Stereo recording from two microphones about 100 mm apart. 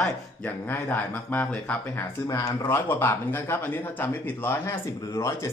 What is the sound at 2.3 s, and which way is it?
Speech, 35° left (ahead or behind).